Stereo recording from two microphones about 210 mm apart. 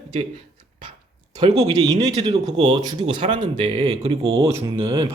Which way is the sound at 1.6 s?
20° right (ahead or behind).